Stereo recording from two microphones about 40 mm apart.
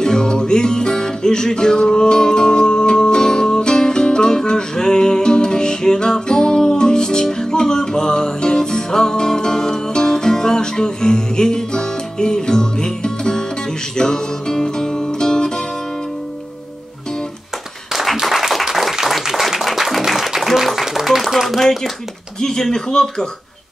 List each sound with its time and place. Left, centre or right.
0.0 s music: centre
18.2 s applause: centre
22.4 s speech: centre